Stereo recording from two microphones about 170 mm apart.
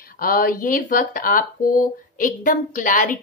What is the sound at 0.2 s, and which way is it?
Speech, 55° left (ahead or behind).